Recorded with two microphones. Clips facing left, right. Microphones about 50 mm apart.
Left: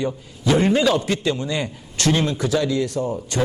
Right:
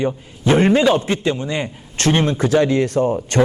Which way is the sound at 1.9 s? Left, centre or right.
Right.